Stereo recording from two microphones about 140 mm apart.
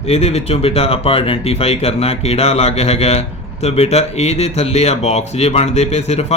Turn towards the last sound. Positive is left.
turn(degrees=50)  # may be behind; listen again after turning